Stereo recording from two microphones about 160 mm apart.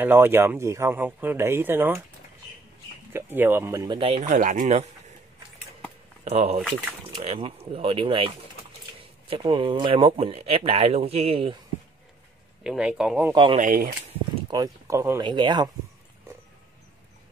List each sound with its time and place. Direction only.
0.0 s speech: 15° right (ahead or behind)
3.1 s speech: 15° right (ahead or behind)
4.0 s speech: 35° right (ahead or behind)
4.3 s speech: 55° right (ahead or behind)
6.2 s speech: 40° right (ahead or behind)
9.3 s speech: 30° right (ahead or behind)
12.6 s speech: 5° right (ahead or behind)
13.3 s speech: 35° right (ahead or behind)
13.6 s speech: 60° right (ahead or behind)
14.5 s speech: 20° right (ahead or behind)